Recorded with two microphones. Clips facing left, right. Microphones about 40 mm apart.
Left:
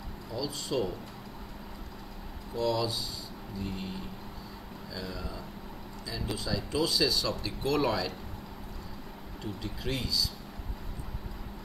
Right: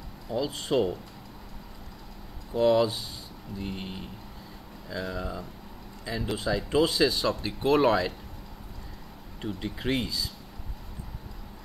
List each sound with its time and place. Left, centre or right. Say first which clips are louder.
0.3 s speech: right 6 dB; right
2.5 s speech: right 7 dB; right
9.4 s speech: right 5 dB; right